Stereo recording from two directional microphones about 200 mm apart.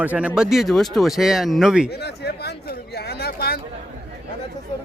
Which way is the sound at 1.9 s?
55° left (ahead or behind).